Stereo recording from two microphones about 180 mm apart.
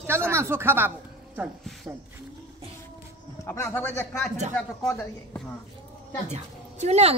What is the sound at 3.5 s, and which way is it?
A man's voice, 15° left (ahead or behind).